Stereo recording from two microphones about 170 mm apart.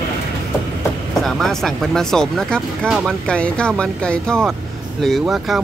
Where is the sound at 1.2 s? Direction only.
Centre (ahead or behind).